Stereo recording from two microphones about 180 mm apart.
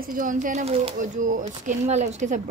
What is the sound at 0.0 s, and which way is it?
Speech, 50° right (ahead or behind).